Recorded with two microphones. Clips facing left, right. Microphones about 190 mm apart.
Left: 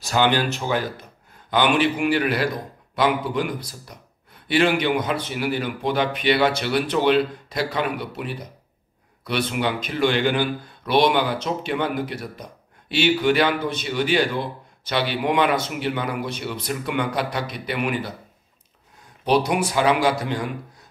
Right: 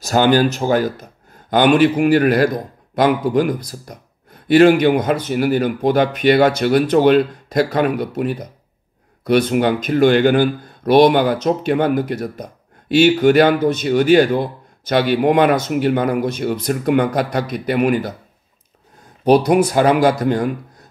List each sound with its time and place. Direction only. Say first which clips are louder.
0.0 s speech: right 7 dB; 45° right (ahead or behind)
19.2 s speech: right 8 dB; 45° right (ahead or behind)